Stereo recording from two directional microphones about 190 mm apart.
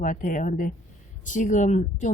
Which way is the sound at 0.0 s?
45° left (ahead or behind).